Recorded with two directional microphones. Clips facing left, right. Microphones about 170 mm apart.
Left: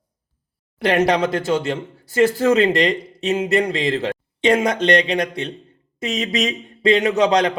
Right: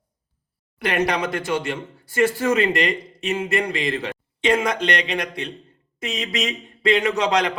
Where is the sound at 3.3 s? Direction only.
35° left (ahead or behind).